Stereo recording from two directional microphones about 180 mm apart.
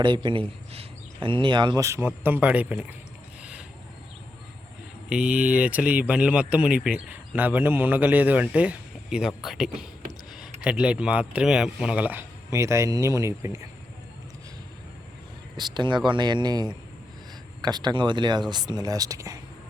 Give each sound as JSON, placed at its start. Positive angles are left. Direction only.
{"t": 0.0, "sound": "speech", "side_deg": -25}
{"t": 5.0, "sound": "speech", "side_deg": -5}
{"t": 15.5, "sound": "speech", "side_deg": -25}